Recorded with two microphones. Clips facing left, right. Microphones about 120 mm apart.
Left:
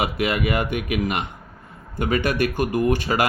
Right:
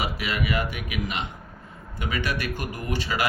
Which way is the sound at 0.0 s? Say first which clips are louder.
Left 6 dB; 55° left (ahead or behind).